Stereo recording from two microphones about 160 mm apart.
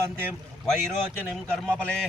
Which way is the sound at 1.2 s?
5° left (ahead or behind).